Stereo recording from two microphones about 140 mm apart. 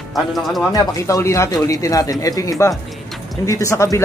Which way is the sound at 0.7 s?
25° left (ahead or behind).